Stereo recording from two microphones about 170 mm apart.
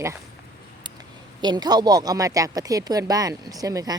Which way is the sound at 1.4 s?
25° right (ahead or behind).